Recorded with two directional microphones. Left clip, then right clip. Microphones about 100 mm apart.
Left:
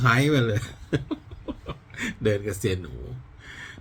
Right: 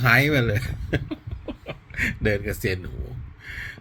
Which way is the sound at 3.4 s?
30° left (ahead or behind).